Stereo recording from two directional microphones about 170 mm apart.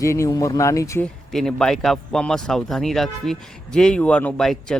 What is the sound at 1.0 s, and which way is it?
Speech, 5° left (ahead or behind).